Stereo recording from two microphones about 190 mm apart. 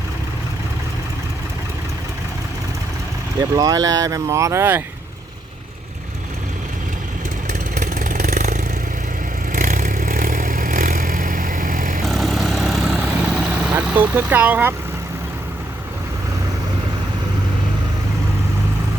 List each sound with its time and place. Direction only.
3.5 s speech: 20° right (ahead or behind)
7.8 s vehicle: 40° right (ahead or behind)
12.0 s vehicle: centre (ahead or behind)